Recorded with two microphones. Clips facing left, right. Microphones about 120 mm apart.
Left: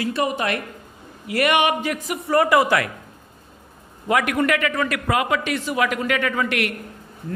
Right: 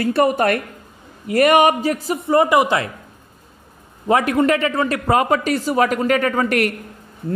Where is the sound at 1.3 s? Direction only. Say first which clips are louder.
Right 6 dB; 40° right (ahead or behind); by 2.9 s 25° right (ahead or behind).